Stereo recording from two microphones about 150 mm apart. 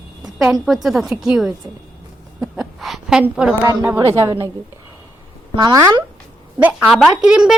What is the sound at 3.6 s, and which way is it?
Speech, 20° right (ahead or behind).